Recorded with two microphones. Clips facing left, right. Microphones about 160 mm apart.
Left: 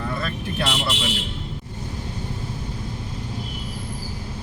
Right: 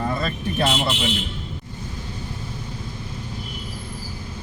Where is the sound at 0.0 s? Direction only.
25° right (ahead or behind).